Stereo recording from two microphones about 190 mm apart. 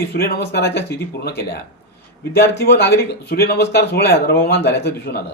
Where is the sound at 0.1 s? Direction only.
55° left (ahead or behind).